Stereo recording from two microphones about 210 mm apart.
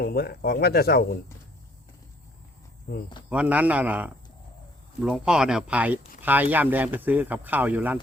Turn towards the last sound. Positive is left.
turn(degrees=-10)  # may be behind; listen again after turning